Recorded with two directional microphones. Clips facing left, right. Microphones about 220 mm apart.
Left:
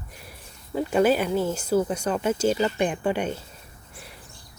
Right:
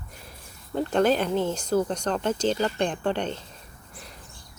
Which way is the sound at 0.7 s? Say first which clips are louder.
Left 1 dB; 5° left (ahead or behind).